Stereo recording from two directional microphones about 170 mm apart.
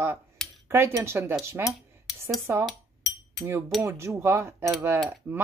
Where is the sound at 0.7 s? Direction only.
15° right (ahead or behind).